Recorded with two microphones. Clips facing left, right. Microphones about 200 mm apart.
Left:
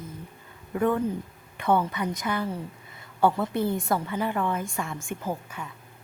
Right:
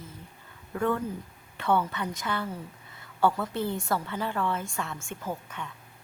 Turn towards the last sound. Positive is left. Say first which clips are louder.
# left 4 dB
turn(degrees=15)  # may be behind; listen again after turning